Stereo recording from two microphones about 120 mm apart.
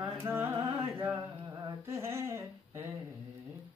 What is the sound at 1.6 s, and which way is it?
Humming, 20° right (ahead or behind).